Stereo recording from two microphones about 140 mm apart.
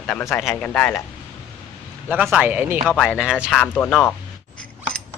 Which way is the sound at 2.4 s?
15° right (ahead or behind).